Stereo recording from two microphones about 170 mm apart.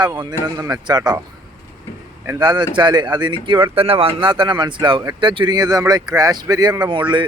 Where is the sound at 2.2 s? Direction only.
20° right (ahead or behind).